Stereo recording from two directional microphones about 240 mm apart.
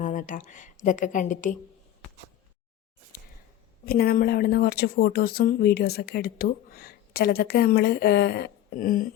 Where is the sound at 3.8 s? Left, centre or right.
Left.